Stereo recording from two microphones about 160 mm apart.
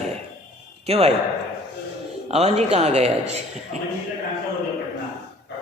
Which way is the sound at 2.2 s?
40° right (ahead or behind).